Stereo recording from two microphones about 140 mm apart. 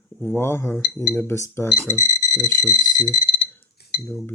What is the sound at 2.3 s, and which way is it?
Speech, 30° right (ahead or behind).